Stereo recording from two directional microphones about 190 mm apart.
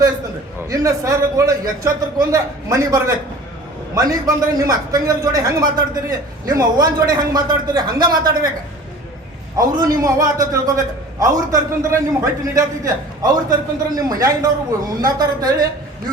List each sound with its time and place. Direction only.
0.7 s a man's voice: 15° right (ahead or behind)
9.6 s a man's voice: 20° right (ahead or behind)